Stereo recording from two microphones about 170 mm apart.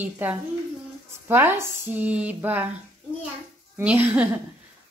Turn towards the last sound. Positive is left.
turn(degrees=-10)  # may be behind; listen again after turning